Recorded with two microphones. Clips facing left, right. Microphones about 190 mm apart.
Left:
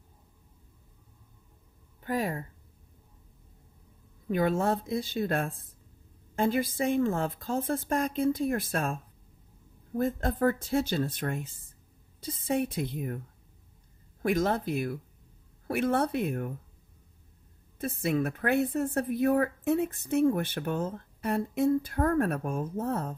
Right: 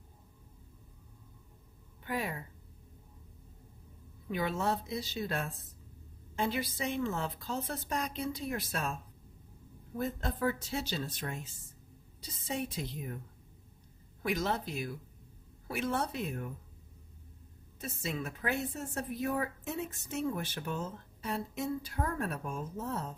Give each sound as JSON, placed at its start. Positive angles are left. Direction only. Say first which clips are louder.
{"t": 2.0, "sound": "a woman's voice", "louder": "left 6 dB", "side_deg": 45}
{"t": 4.3, "sound": "a woman's voice", "louder": "left 6 dB", "side_deg": 50}
{"t": 14.2, "sound": "a woman's voice", "louder": "left 6 dB", "side_deg": 50}
{"t": 17.7, "sound": "a woman's voice", "louder": "left 10 dB", "side_deg": 55}